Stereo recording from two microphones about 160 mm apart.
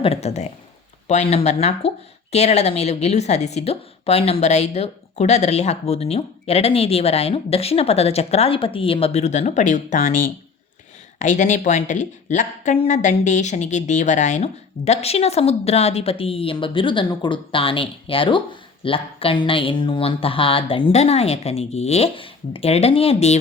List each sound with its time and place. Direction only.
0.0 s a woman's voice: 40° left (ahead or behind)